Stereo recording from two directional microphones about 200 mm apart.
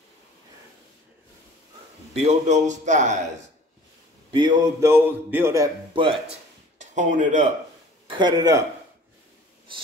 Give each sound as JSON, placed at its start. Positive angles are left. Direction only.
{"t": 2.1, "sound": "a man's voice", "side_deg": -35}
{"t": 4.3, "sound": "a man's voice", "side_deg": -25}
{"t": 6.8, "sound": "speech", "side_deg": -40}
{"t": 8.1, "sound": "speech", "side_deg": -20}